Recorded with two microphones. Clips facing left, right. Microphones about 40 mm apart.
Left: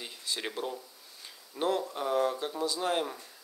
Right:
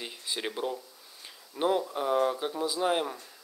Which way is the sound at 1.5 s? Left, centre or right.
Centre.